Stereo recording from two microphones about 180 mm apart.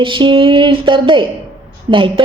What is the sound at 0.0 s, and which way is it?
A woman's voice, 25° right (ahead or behind).